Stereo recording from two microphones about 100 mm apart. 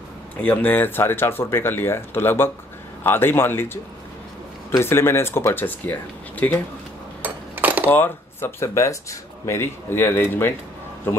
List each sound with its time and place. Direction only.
0.4 s speech: 15° left (ahead or behind)
7.2 s a sound: 15° right (ahead or behind)
7.9 s speech: 20° left (ahead or behind)